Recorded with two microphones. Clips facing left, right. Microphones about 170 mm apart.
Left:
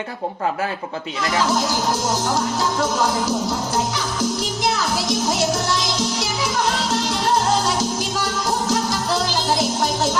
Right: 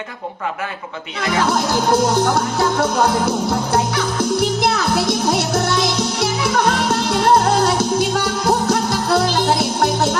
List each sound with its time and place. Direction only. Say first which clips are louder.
1.5 s music: right 5 dB; 60° right (ahead or behind)